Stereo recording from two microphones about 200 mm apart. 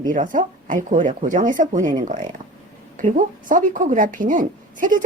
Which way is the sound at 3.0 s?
40° right (ahead or behind).